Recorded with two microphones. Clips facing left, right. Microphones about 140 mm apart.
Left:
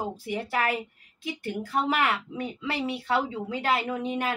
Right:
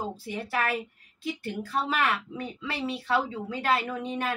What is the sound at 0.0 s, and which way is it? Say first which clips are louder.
A woman's voice: left 2 dB; 15° left (ahead or behind).